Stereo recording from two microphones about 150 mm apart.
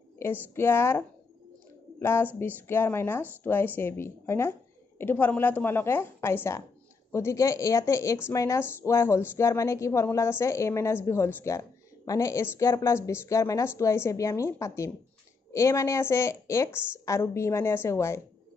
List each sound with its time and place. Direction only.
0.2 s a woman's voice: 15° left (ahead or behind)